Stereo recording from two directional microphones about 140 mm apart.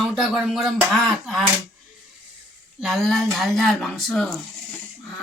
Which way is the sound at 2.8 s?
5° right (ahead or behind).